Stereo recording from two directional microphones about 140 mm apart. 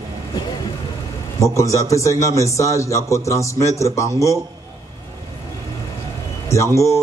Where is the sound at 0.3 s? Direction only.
30° left (ahead or behind).